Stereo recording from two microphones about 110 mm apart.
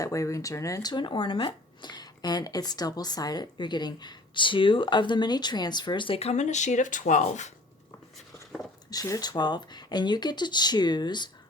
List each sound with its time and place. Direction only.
0.0 s speech: 30° left (ahead or behind); by 6.1 s 45° left (ahead or behind)
6.1 s speech: 80° left
8.9 s speech: 35° left (ahead or behind)